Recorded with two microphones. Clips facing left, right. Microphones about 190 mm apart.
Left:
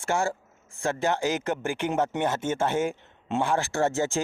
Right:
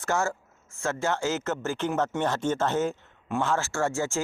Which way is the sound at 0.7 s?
15° left (ahead or behind).